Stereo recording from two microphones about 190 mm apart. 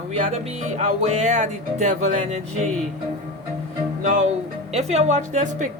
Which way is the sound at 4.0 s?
40° right (ahead or behind).